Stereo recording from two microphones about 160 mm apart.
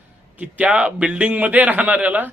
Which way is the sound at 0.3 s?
10° right (ahead or behind).